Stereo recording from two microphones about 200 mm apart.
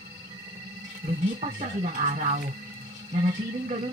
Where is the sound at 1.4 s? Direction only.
35° right (ahead or behind).